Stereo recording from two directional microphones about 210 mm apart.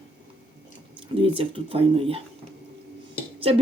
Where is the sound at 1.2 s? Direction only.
25° right (ahead or behind).